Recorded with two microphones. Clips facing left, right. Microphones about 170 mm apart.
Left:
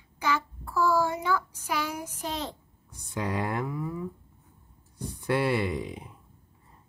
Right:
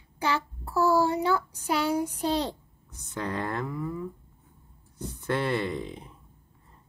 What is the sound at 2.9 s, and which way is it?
Speech, 15° left (ahead or behind).